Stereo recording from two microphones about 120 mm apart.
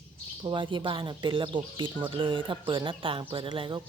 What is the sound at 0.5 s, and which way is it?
Speech, 40° right (ahead or behind).